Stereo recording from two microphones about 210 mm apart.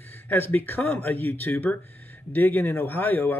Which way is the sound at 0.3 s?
10° left (ahead or behind).